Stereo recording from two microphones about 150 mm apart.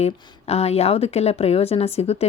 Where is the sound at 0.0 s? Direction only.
45° left (ahead or behind).